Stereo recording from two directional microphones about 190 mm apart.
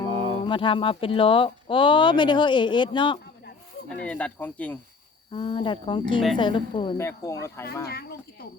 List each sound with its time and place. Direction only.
0.1 s a sound: 30° right (ahead or behind)
0.4 s speech: 25° left (ahead or behind)
4.0 s speech: 5° left (ahead or behind)
5.3 s speech: 25° left (ahead or behind)
7.0 s speech: 15° left (ahead or behind)
7.9 s speech: 55° left (ahead or behind)